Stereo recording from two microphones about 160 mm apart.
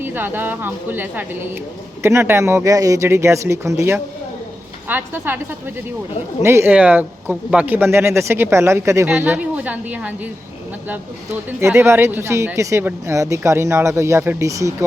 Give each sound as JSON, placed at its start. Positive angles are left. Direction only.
{"t": 0.0, "sound": "speech", "side_deg": -15}
{"t": 9.0, "sound": "speech", "side_deg": -10}
{"t": 11.6, "sound": "speech", "side_deg": -15}